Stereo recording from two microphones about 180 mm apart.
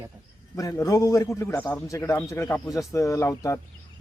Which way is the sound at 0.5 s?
15° left (ahead or behind).